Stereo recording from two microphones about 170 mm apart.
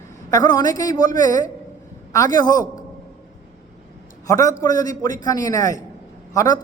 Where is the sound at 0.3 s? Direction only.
20° left (ahead or behind).